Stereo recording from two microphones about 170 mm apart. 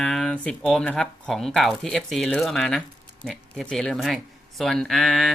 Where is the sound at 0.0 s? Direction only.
5° left (ahead or behind).